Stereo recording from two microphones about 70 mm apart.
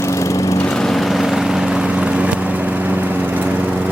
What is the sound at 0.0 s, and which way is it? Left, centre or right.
Lawn mower, left.